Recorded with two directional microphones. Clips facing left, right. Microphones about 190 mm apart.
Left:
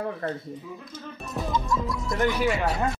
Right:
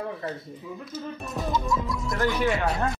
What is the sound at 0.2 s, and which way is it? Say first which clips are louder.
Speech: left 4 dB; 50° left (ahead or behind).